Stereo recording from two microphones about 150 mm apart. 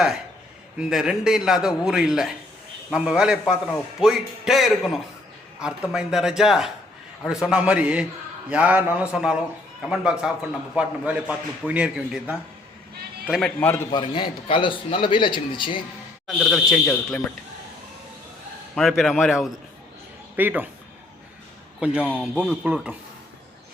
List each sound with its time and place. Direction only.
0.8 s a man's voice: 5° right (ahead or behind)
13.6 s a man's voice: 15° left (ahead or behind)
13.9 s speech: 35° left (ahead or behind)
16.2 s a man's voice: centre (ahead or behind)
18.7 s a man's voice: centre (ahead or behind)
20.3 s speech: 10° right (ahead or behind)
21.8 s a man's voice: 5° right (ahead or behind)